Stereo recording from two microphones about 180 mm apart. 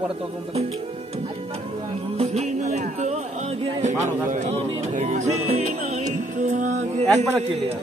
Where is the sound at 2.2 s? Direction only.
35° right (ahead or behind).